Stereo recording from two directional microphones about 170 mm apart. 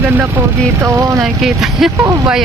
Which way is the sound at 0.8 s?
20° right (ahead or behind).